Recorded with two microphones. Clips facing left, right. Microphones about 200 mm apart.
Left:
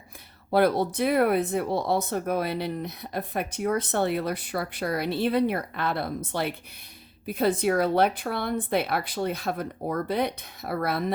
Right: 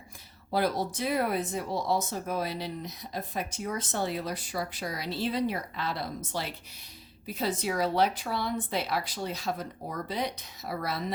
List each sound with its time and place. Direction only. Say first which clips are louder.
0.5 s speech: left 7 dB; 60° left (ahead or behind)